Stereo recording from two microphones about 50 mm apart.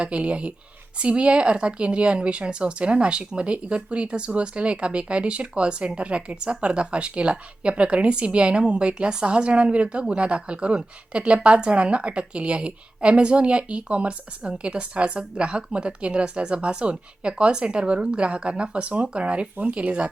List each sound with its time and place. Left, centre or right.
0.0 s a woman's voice: right